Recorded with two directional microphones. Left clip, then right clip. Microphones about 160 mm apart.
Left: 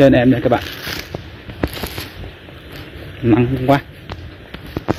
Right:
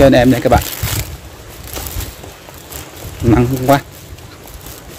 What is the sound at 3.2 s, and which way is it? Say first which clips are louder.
Speech: right 2 dB; 15° right (ahead or behind).